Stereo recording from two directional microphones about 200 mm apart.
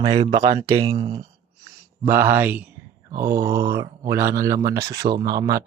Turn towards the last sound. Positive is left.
turn(degrees=-20)  # may be behind; listen again after turning